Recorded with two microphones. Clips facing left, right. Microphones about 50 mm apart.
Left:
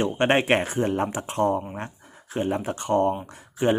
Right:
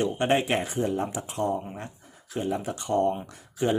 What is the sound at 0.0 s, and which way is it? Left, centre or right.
Speech, left.